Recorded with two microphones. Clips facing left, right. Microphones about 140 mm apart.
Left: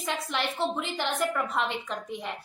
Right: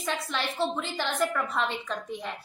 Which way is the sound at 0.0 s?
15° left (ahead or behind).